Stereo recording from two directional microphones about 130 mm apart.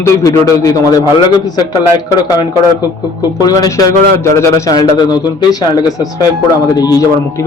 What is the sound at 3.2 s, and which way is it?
Speech, 30° left (ahead or behind).